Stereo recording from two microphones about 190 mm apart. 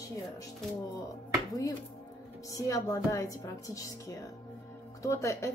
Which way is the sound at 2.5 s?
15° left (ahead or behind).